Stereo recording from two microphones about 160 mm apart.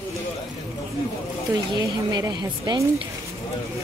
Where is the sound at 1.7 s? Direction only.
25° right (ahead or behind).